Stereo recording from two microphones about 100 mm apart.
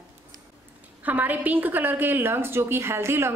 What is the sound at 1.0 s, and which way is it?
A woman's voice, 15° right (ahead or behind).